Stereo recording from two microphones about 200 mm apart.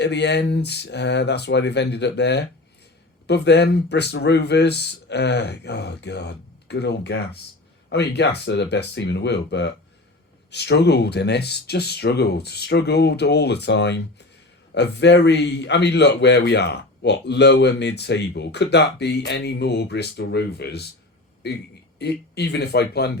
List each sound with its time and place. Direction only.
0.0 s a man's voice: 60° left (ahead or behind)